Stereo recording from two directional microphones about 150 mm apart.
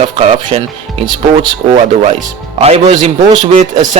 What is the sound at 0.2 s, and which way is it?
Speech, 45° right (ahead or behind).